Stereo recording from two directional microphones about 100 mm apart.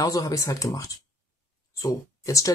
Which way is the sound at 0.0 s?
35° left (ahead or behind).